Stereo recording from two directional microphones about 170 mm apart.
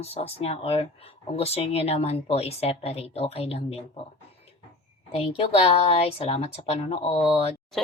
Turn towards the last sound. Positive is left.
turn(degrees=35)  # may be behind; listen again after turning